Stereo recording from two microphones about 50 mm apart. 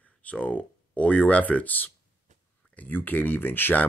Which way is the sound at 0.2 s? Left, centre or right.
Left.